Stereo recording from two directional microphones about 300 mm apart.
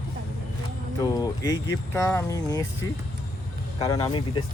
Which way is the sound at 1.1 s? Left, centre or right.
Centre.